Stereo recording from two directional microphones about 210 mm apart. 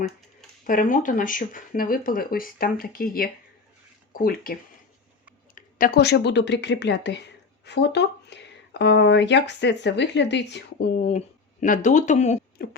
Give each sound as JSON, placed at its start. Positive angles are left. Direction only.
{"t": 0.7, "sound": "speech", "side_deg": 40}
{"t": 5.5, "sound": "speech", "side_deg": 40}